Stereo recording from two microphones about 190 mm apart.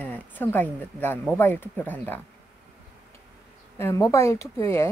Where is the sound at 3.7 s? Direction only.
15° left (ahead or behind).